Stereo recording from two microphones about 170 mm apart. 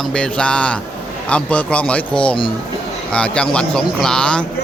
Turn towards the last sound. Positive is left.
turn(degrees=5)  # may be behind; listen again after turning